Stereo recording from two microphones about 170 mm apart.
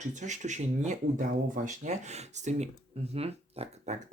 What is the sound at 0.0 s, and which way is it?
Speech, 45° right (ahead or behind).